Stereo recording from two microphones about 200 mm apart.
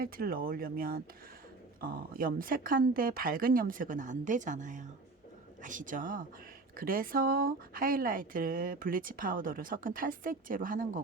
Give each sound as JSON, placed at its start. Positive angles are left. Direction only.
{"t": 0.0, "sound": "speech", "side_deg": -45}